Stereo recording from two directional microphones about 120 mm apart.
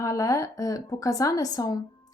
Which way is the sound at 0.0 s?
25° left (ahead or behind).